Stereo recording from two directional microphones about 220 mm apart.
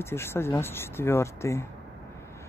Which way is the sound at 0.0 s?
10° left (ahead or behind).